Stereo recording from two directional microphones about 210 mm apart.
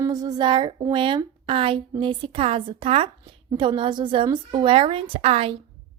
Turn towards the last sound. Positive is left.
turn(degrees=-25)  # may be behind; listen again after turning